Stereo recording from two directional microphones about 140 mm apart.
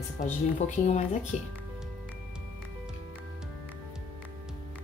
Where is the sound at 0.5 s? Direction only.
55° left (ahead or behind).